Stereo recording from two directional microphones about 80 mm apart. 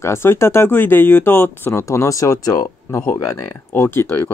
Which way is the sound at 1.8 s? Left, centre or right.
Left.